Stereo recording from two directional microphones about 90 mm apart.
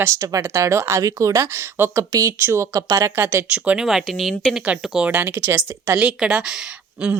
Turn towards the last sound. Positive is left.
turn(degrees=-5)  # may be behind; listen again after turning